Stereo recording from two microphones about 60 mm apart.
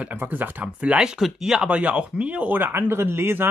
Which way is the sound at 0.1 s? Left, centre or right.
Right.